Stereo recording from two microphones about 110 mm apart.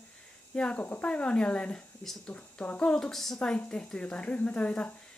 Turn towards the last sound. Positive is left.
turn(degrees=10)  # may be behind; listen again after turning